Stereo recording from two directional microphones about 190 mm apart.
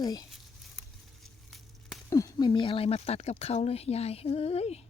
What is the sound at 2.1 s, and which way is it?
Speech, 15° left (ahead or behind).